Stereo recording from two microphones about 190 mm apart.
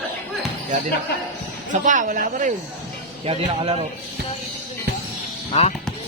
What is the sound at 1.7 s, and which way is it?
Speech, 40° right (ahead or behind).